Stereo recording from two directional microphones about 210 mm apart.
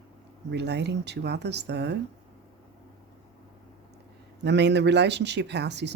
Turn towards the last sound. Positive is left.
turn(degrees=-55)  # may be behind; listen again after turning